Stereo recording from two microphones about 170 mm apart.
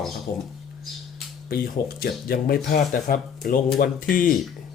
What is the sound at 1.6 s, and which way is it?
Speech, 60° left (ahead or behind).